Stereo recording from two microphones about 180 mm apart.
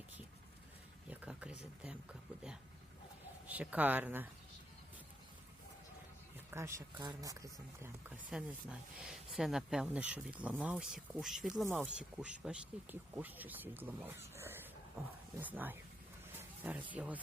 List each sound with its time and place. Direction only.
1.0 s speech: 10° right (ahead or behind)
3.4 s speech: 10° right (ahead or behind)
6.3 s speech: 15° right (ahead or behind)
8.3 s speech: 5° right (ahead or behind)